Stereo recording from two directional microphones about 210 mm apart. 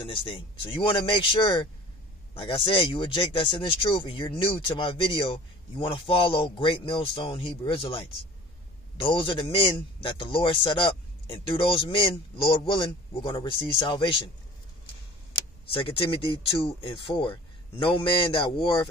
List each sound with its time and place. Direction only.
0.0 s speech: 25° left (ahead or behind)
9.0 s speech: 25° left (ahead or behind)
15.7 s speech: 25° left (ahead or behind)